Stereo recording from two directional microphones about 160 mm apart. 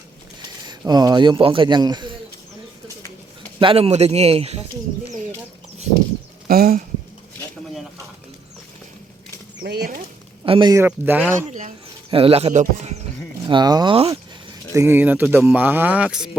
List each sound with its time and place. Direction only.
0.7 s a man's voice: 25° right (ahead or behind)
3.6 s a man's voice: 35° right (ahead or behind)
6.5 s speech: 70° right (ahead or behind)
9.6 s speech: 80° right
10.4 s a man's voice: 30° right (ahead or behind)
10.8 s speech: 10° right (ahead or behind)
12.1 s a man's voice: 35° right (ahead or behind)
13.5 s a man's voice: 25° right (ahead or behind)
13.9 s a man's voice: 35° right (ahead or behind)
14.7 s speech: 15° right (ahead or behind)